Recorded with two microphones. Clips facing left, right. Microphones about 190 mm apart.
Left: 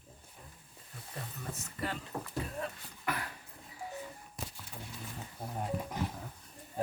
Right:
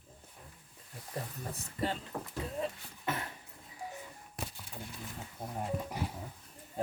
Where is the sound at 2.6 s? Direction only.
25° right (ahead or behind).